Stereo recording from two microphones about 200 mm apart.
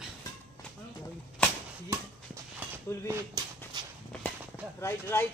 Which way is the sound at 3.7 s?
20° right (ahead or behind).